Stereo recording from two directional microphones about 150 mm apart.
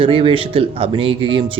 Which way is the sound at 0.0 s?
35° right (ahead or behind).